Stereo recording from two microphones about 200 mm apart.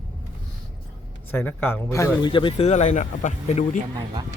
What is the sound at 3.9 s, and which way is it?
Speech, 20° right (ahead or behind).